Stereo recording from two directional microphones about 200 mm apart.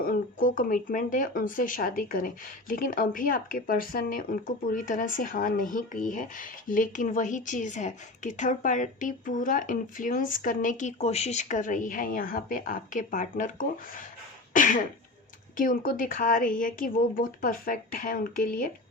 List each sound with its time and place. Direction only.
0.0 s speech: 45° left (ahead or behind)